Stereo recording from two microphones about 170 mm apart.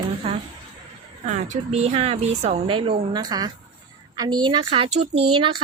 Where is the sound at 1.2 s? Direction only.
40° right (ahead or behind).